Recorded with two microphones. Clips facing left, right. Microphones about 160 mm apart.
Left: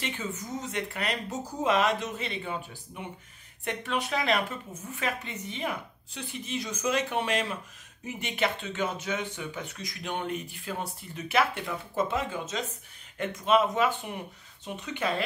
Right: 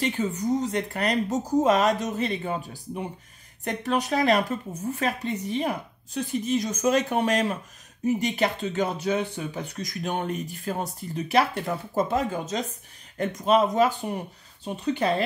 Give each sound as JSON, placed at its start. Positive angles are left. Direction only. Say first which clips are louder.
{"t": 0.0, "sound": "a woman's voice", "louder": "right 9 dB", "side_deg": -35}